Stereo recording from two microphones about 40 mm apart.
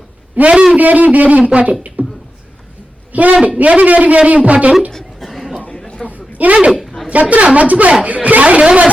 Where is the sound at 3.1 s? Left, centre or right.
Right.